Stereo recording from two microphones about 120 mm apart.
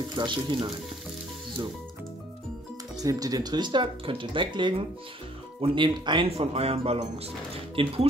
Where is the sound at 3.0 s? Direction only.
30° right (ahead or behind).